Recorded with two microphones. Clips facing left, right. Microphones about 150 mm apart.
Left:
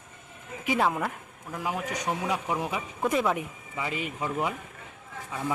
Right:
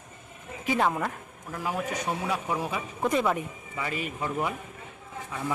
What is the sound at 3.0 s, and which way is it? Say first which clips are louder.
Speech: even; 5° left (ahead or behind).